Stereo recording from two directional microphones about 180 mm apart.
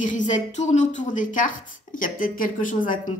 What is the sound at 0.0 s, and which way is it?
A woman's voice, 45° left (ahead or behind).